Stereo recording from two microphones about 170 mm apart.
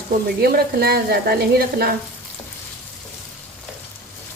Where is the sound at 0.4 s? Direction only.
65° right (ahead or behind).